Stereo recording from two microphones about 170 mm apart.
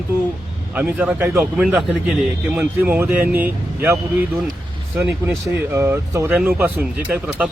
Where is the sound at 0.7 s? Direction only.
10° right (ahead or behind).